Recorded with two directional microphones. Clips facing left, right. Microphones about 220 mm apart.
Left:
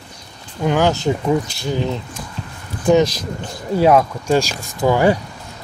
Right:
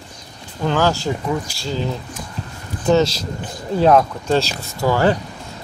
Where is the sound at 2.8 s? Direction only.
15° left (ahead or behind).